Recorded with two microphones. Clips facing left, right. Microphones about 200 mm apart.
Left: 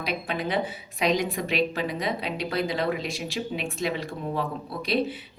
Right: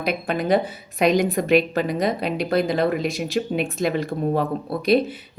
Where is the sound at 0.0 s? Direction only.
50° right (ahead or behind).